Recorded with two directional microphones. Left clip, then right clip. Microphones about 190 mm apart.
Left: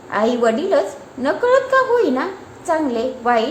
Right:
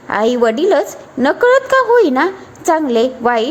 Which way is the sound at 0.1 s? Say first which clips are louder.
Right 3 dB; 45° right (ahead or behind).